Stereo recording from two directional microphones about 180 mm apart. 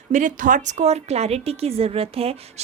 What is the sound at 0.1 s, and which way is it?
A woman's voice, 45° right (ahead or behind).